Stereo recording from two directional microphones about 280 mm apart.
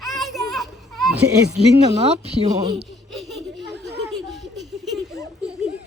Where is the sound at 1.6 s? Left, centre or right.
Right.